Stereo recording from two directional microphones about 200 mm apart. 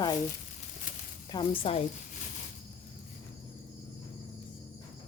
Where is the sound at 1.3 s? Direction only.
25° left (ahead or behind).